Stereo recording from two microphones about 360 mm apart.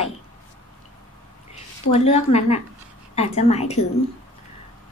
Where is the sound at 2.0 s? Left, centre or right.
Centre.